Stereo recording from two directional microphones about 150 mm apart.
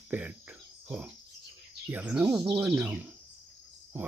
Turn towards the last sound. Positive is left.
turn(degrees=-15)  # may be behind; listen again after turning